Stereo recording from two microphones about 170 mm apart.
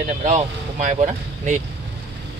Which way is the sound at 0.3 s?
45° right (ahead or behind).